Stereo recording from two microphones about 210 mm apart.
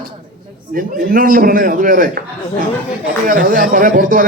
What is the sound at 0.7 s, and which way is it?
A man's voice, 45° right (ahead or behind).